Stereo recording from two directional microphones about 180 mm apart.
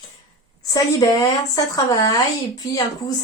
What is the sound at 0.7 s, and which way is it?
Speech, 20° left (ahead or behind).